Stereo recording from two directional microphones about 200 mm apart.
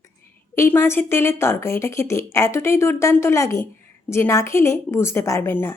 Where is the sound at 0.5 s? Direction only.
15° left (ahead or behind).